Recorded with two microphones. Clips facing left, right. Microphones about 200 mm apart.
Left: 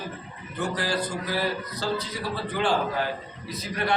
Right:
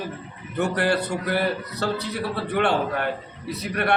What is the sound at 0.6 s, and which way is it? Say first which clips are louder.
A man's voice: right 5 dB; 65° right (ahead or behind).